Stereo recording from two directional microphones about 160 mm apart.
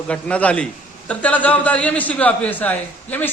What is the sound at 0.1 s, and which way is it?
A man's voice, 10° left (ahead or behind).